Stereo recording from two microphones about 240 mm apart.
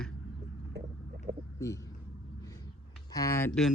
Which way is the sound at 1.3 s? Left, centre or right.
Centre.